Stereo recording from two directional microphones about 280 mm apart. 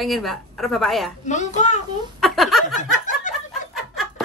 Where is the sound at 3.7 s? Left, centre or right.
Centre.